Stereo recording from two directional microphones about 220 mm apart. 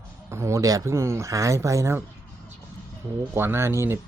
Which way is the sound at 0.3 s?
15° right (ahead or behind).